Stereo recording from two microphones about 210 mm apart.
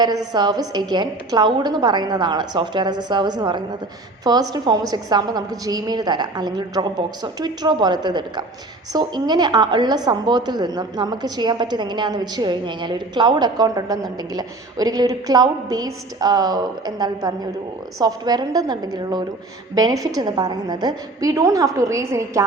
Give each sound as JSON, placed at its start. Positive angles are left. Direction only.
{"t": 0.0, "sound": "a woman's voice", "side_deg": -20}